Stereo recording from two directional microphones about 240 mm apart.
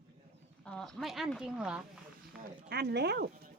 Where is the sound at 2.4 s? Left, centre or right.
Right.